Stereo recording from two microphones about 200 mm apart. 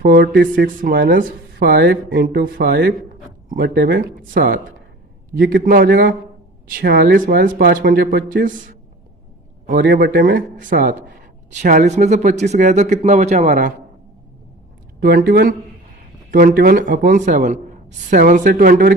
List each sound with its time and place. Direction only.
0.0 s speech: 50° right (ahead or behind)
0.8 s speech: 45° right (ahead or behind); by 2.2 s 65° right (ahead or behind)
2.2 s a man's voice: 45° right (ahead or behind)
15.0 s a man's voice: 50° right (ahead or behind)